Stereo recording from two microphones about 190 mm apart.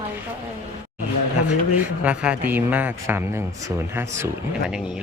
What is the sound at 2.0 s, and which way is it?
Speech, 5° right (ahead or behind).